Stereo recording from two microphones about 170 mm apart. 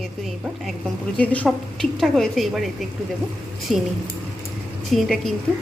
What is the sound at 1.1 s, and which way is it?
A woman's voice, 10° left (ahead or behind).